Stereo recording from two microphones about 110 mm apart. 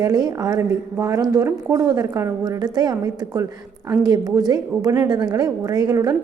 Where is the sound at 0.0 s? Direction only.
35° right (ahead or behind).